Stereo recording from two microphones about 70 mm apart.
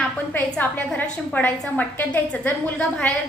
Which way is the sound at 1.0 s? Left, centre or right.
Left.